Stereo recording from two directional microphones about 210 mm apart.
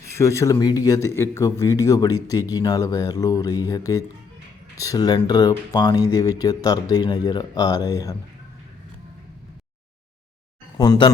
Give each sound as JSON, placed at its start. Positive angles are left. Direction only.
{"t": 0.1, "sound": "speech", "side_deg": 15}
{"t": 10.8, "sound": "speech", "side_deg": 20}